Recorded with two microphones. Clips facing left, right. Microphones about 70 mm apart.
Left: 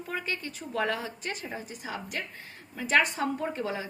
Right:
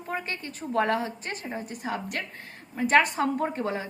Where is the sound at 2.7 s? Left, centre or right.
Right.